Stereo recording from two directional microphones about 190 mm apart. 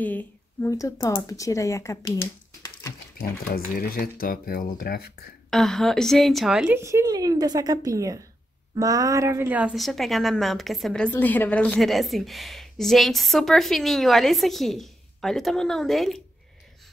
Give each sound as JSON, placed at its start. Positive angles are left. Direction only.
{"t": 0.0, "sound": "speech", "side_deg": 10}
{"t": 3.2, "sound": "speech", "side_deg": 50}
{"t": 5.5, "sound": "a woman's voice", "side_deg": 0}
{"t": 6.8, "sound": "a woman's voice", "side_deg": -15}